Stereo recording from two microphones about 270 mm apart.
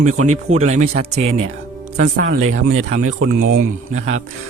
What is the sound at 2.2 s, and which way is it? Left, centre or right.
Speech, right.